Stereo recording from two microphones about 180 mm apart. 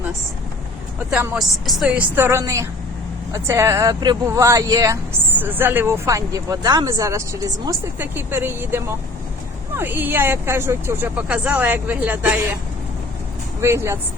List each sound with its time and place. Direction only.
1.1 s speech: 10° right (ahead or behind)
13.6 s speech: 15° right (ahead or behind)